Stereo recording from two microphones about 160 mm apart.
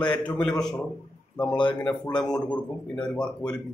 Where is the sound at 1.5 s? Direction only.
30° left (ahead or behind).